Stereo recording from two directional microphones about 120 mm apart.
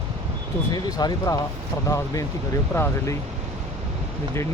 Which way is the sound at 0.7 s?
35° left (ahead or behind).